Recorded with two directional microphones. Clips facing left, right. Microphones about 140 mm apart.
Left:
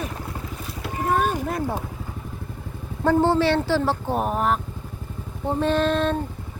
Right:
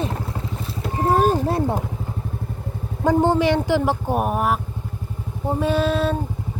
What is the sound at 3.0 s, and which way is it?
Speech, 15° right (ahead or behind).